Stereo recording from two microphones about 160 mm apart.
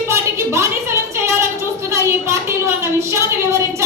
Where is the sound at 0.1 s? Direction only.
15° right (ahead or behind).